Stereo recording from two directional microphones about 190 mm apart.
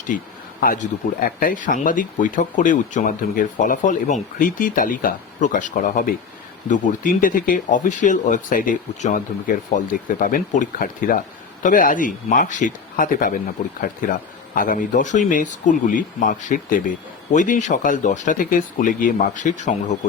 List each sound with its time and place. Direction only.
0.6 s speech: 50° left (ahead or behind)